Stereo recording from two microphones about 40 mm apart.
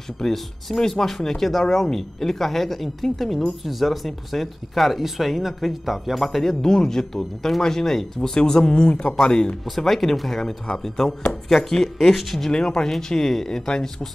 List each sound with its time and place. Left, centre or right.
0.2 s speech: centre
9.8 s speech: centre
12.4 s speech: centre